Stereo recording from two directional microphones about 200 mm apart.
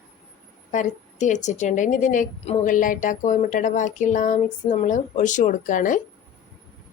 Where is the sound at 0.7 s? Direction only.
40° left (ahead or behind).